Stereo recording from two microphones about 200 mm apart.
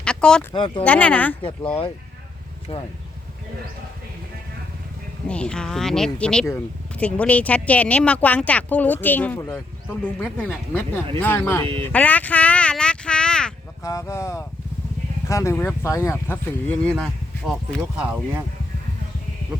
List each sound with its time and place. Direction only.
0.0 s a sound: 5° left (ahead or behind)
0.5 s speech: 25° left (ahead or behind)
0.9 s speech: 5° left (ahead or behind)
2.7 s speech: 30° left (ahead or behind)
5.3 s speech: 5° left (ahead or behind)
11.6 s speech: 25° right (ahead or behind)
11.9 s speech: 5° left (ahead or behind)
13.8 s speech: 15° left (ahead or behind); by 18.4 s 5° right (ahead or behind)